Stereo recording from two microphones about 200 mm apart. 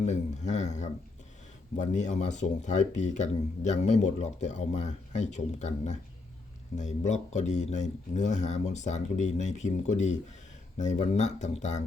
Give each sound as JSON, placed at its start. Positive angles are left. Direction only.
{"t": 0.0, "sound": "speech", "side_deg": 35}